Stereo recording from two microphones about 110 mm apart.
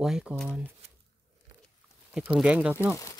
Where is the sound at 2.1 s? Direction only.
10° right (ahead or behind).